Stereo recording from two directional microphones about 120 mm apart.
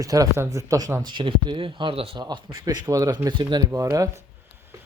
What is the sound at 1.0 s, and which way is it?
Speech, 40° right (ahead or behind).